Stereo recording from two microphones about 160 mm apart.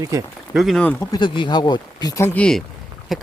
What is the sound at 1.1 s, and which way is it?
Speech, 30° left (ahead or behind).